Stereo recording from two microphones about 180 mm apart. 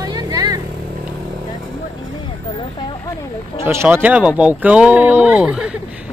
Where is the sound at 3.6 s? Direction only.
10° right (ahead or behind).